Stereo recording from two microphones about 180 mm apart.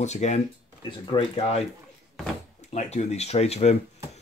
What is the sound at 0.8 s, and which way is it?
Speech, 30° left (ahead or behind).